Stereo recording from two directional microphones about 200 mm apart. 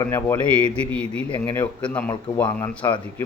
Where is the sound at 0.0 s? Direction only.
10° left (ahead or behind).